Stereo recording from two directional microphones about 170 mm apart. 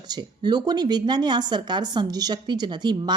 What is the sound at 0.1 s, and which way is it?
Speech, 25° right (ahead or behind).